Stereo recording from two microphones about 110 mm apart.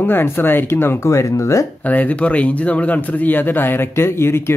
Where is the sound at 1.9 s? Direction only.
15° left (ahead or behind).